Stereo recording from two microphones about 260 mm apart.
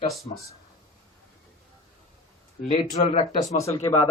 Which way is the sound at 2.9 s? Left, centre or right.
Left.